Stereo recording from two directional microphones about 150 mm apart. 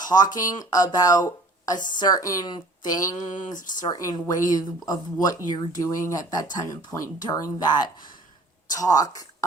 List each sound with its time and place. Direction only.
0.0 s speech: 25° left (ahead or behind)
8.7 s speech: 25° left (ahead or behind)